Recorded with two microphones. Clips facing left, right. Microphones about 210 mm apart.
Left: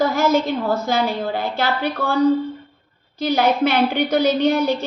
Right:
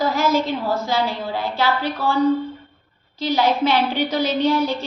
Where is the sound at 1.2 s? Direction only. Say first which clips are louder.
Left 1 dB; 55° left (ahead or behind).